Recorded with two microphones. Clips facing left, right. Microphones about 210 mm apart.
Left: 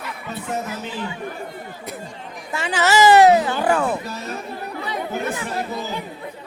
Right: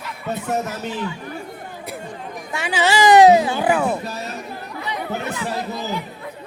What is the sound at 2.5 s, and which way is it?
Speech, 5° right (ahead or behind).